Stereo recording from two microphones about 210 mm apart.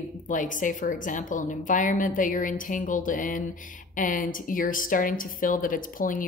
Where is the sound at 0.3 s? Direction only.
40° left (ahead or behind).